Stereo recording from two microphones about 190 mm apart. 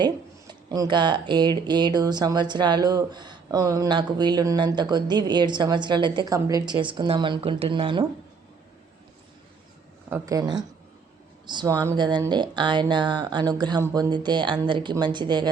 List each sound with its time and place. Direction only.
0.0 s speech: 20° right (ahead or behind)
10.1 s speech: 20° right (ahead or behind)